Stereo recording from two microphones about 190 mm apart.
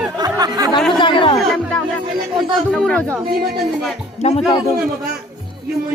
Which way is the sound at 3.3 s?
55° right (ahead or behind).